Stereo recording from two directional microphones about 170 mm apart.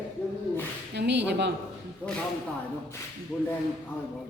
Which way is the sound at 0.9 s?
90° right.